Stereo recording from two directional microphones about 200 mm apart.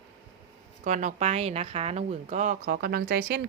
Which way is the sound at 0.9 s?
40° right (ahead or behind).